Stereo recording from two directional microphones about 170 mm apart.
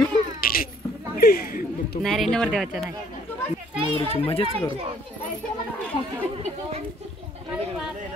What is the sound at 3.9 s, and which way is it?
Speech, 35° left (ahead or behind).